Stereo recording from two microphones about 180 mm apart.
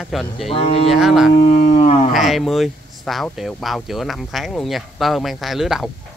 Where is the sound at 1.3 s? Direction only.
40° left (ahead or behind).